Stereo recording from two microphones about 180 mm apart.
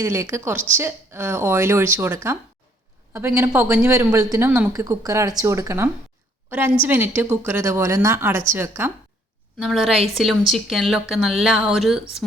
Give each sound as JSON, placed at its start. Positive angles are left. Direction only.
{"t": 0.0, "sound": "a woman's voice", "side_deg": -15}
{"t": 9.6, "sound": "speech", "side_deg": 0}